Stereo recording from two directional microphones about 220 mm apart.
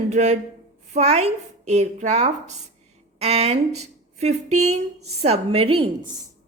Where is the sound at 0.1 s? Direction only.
30° right (ahead or behind).